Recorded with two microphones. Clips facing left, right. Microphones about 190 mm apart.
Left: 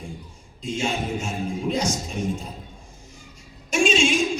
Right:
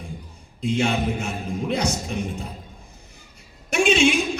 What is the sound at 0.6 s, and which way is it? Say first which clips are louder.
Speech: right 4 dB; 60° right (ahead or behind).